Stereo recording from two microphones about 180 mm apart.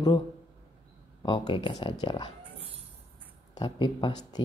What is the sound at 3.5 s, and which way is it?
Speech, 25° left (ahead or behind).